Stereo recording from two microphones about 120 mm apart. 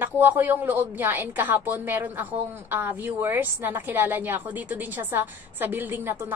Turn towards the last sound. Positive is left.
turn(degrees=-20)  # may be behind; listen again after turning